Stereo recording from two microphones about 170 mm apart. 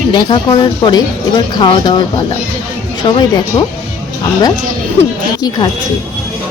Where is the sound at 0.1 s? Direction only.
25° left (ahead or behind).